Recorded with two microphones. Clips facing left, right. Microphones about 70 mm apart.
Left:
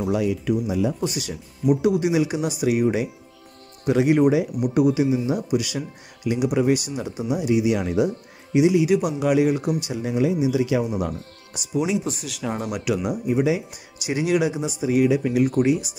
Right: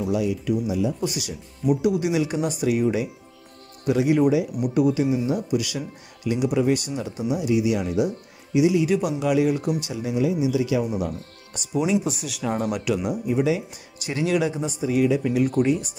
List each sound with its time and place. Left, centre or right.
0.2 s speech: left
1.0 s speech: left
2.3 s speech: centre
3.8 s speech: left
4.8 s speech: left
7.7 s speech: left
8.5 s speech: left
8.8 s speech: centre
9.2 s speech: left
9.9 s speech: left
11.5 s speech: centre
12.9 s speech: centre